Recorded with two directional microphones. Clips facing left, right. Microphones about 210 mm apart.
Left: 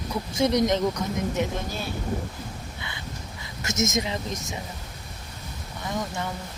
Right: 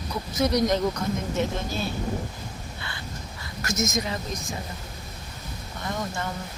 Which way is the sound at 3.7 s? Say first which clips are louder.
Left 1 dB; 25° left (ahead or behind).